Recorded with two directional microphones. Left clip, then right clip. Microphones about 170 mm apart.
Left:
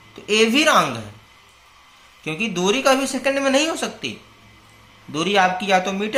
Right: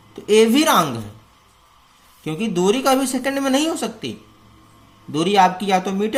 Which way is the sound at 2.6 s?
45° right (ahead or behind).